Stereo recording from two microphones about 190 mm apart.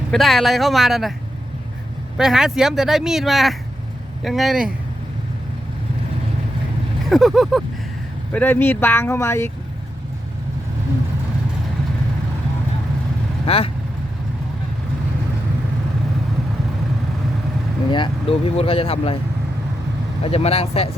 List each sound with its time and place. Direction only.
0.1 s speech: centre (ahead or behind)
2.1 s speech: 5° right (ahead or behind)
7.1 s speech: centre (ahead or behind)
13.4 s speech: 30° left (ahead or behind)
17.9 s speech: 25° left (ahead or behind)
20.2 s speech: 30° left (ahead or behind)